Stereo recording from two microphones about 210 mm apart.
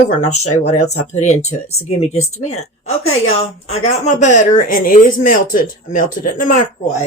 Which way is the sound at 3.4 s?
30° left (ahead or behind).